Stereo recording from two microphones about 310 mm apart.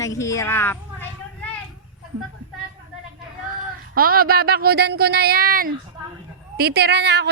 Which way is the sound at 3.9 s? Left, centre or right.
Right.